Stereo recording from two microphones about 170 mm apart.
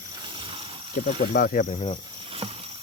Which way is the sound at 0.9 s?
60° left (ahead or behind).